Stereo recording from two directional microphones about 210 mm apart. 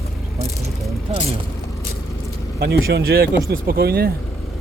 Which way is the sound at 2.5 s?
50° right (ahead or behind).